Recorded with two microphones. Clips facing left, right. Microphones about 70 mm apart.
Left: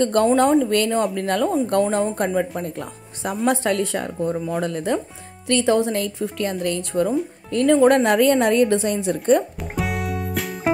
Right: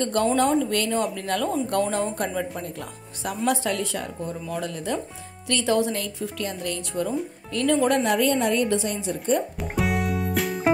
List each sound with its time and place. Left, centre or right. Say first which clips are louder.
0.0 s a woman's voice: left 5 dB; left
3.4 s a woman's voice: left 4 dB; left
8.0 s a woman's voice: left 5 dB; left
9.6 s music: right 1 dB; centre